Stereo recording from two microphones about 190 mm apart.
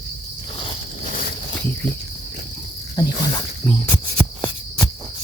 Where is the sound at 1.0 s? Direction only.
45° left (ahead or behind).